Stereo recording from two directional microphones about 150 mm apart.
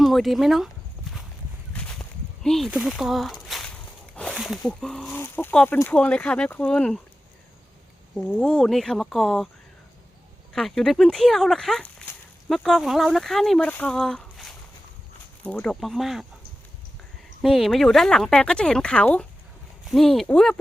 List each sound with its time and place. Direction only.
0.0 s speech: centre (ahead or behind)
1.7 s a sound: 5° left (ahead or behind)
2.6 s speech: centre (ahead or behind)
4.1 s a sound: 5° left (ahead or behind)
4.6 s speech: 5° left (ahead or behind)
5.1 s speech: 15° left (ahead or behind)
8.1 s speech: 5° left (ahead or behind)
10.5 s speech: centre (ahead or behind)
17.4 s speech: centre (ahead or behind)